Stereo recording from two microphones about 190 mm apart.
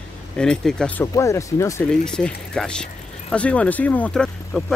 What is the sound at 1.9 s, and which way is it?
Speech, 5° left (ahead or behind).